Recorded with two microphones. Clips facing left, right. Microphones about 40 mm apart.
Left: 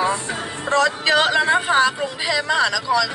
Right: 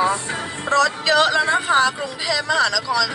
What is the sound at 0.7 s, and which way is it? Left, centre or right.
A woman's voice, left.